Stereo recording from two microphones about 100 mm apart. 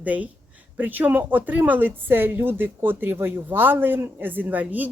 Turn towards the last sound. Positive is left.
turn(degrees=-15)  # may be behind; listen again after turning